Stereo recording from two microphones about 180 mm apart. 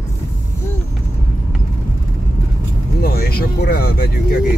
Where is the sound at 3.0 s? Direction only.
55° left (ahead or behind).